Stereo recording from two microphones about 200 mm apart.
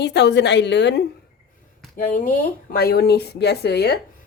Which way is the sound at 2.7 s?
50° left (ahead or behind).